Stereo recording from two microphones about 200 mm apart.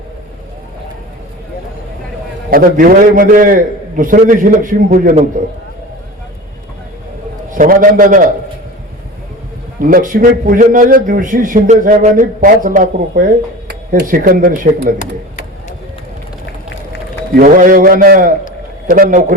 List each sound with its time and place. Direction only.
2.5 s a man's voice: 45° right (ahead or behind)
7.5 s a man's voice: 40° right (ahead or behind)
9.8 s a man's voice: 40° right (ahead or behind)
17.3 s a man's voice: 45° right (ahead or behind)